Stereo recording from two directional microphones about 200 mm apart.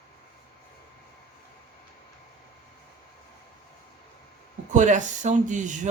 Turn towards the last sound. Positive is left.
turn(degrees=-40)  # may be behind; listen again after turning